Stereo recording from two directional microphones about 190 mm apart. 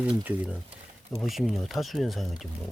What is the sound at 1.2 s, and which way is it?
Speech, centre (ahead or behind).